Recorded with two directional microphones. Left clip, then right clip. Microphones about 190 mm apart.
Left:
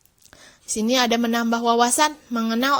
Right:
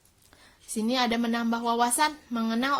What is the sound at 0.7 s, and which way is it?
Speech, 35° left (ahead or behind).